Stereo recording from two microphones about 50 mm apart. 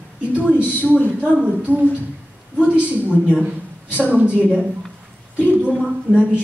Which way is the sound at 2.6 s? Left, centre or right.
Right.